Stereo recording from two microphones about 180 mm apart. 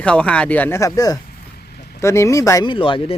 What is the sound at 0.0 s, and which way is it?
A man's voice, 5° left (ahead or behind).